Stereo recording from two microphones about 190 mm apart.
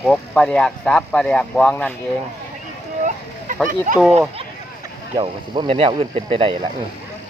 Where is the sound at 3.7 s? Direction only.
45° right (ahead or behind).